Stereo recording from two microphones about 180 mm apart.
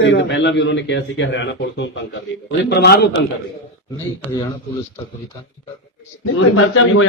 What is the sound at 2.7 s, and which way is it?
Speech, 65° left (ahead or behind).